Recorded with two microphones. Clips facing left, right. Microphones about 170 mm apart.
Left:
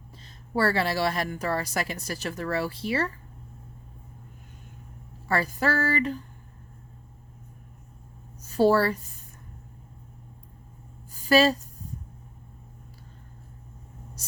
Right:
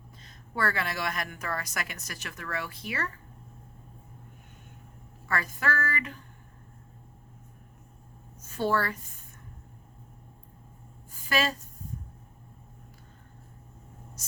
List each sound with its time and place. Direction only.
0.3 s a woman's voice: 30° left (ahead or behind)
5.3 s a woman's voice: 35° left (ahead or behind)
8.4 s a woman's voice: 35° left (ahead or behind)
11.1 s a sound: 35° left (ahead or behind)